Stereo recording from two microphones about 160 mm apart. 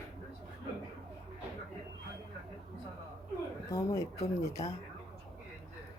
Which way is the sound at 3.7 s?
20° left (ahead or behind).